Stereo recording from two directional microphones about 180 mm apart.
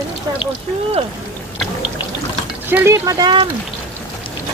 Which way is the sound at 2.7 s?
15° right (ahead or behind).